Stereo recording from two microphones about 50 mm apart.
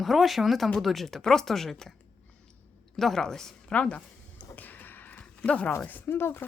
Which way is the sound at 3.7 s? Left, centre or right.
Left.